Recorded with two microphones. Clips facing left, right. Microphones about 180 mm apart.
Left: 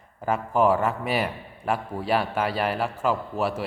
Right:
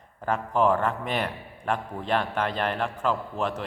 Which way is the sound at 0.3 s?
5° left (ahead or behind).